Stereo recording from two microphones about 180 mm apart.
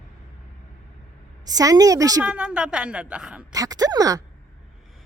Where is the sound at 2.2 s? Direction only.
5° right (ahead or behind).